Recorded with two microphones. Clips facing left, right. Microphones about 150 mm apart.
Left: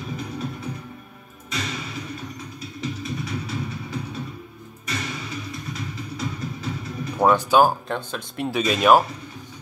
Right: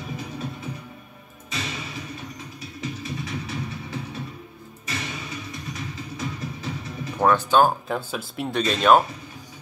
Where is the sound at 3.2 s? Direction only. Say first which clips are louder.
Left 2 dB; 25° right (ahead or behind).